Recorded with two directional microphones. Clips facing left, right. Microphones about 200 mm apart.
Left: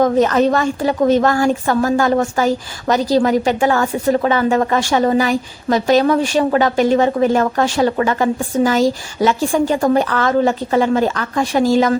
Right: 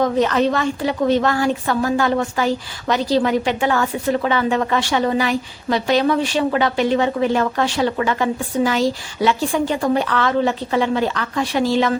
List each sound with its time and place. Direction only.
0.0 s a woman's voice: 45° left (ahead or behind)